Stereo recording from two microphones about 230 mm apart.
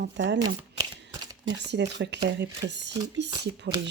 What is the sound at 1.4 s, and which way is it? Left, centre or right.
Speech, right.